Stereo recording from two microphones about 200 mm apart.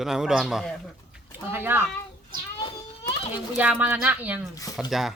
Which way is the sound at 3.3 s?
10° right (ahead or behind).